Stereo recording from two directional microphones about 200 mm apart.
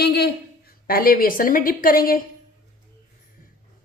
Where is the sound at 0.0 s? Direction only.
55° left (ahead or behind).